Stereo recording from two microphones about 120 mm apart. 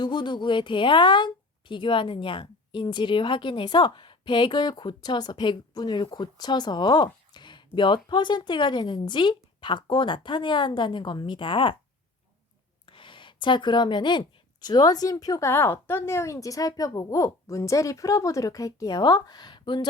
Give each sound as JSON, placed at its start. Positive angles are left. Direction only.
{"t": 0.0, "sound": "a woman's voice", "side_deg": 40}
{"t": 12.8, "sound": "a woman's voice", "side_deg": 45}